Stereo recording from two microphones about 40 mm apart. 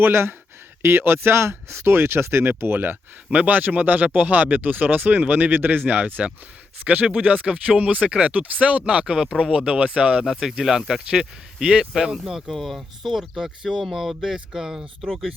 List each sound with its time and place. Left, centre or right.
0.0 s speech: right
0.8 s speech: right
3.3 s speech: right
10.6 s speech: centre
12.5 s speech: centre